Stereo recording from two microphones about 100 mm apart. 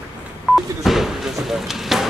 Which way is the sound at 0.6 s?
Centre (ahead or behind).